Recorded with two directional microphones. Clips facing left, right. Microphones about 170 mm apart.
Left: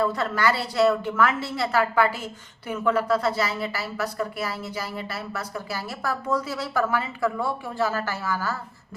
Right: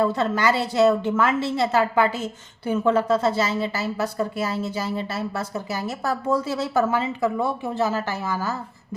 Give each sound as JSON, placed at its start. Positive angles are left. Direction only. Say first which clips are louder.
{"t": 0.0, "sound": "a woman's voice", "louder": "right 3 dB", "side_deg": -25}